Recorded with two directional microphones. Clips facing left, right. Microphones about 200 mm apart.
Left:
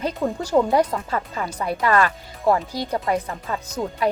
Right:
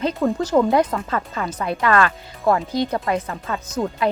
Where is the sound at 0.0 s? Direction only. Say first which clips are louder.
Right 4 dB; 15° left (ahead or behind).